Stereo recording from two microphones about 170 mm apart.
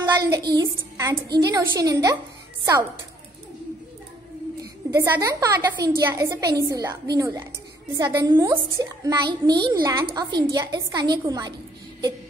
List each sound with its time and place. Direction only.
0.0 s child singing: 25° right (ahead or behind)
0.9 s a woman's voice: 20° right (ahead or behind)
4.6 s a woman's voice: 15° right (ahead or behind)